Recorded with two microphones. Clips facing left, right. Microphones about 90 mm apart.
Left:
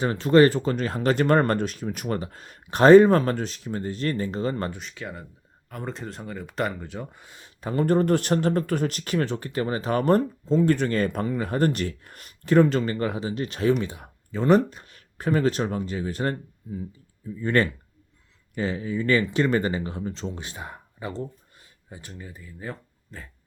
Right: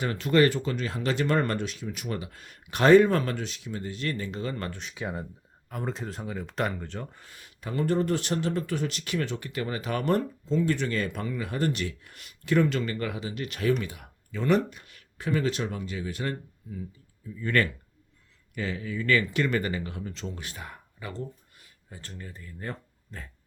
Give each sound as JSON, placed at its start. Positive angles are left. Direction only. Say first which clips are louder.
{"t": 0.0, "sound": "speech", "louder": "left 5 dB", "side_deg": 30}
{"t": 4.9, "sound": "speech", "louder": "right 2 dB", "side_deg": -20}
{"t": 5.6, "sound": "speech", "louder": "even", "side_deg": 0}
{"t": 21.9, "sound": "speech", "louder": "left 2 dB", "side_deg": 15}